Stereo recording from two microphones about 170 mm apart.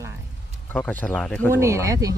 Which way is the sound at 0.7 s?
10° left (ahead or behind).